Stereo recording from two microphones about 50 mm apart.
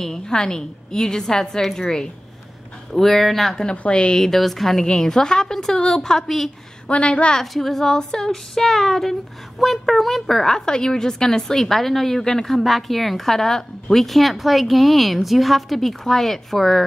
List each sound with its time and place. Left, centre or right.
0.0 s a woman's voice: centre
3.7 s a woman's voice: left; by 6.5 s centre
6.9 s a woman's voice: left
7.5 s a woman's voice: centre